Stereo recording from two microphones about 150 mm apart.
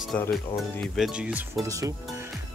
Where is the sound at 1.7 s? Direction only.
20° right (ahead or behind).